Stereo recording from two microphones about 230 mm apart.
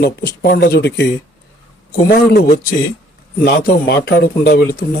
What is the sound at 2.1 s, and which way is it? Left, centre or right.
Speech, left.